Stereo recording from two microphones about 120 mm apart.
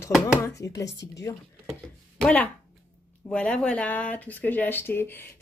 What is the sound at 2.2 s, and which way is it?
Speech, 10° left (ahead or behind).